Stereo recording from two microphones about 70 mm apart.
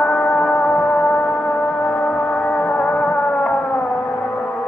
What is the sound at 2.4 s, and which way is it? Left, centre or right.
Music, centre.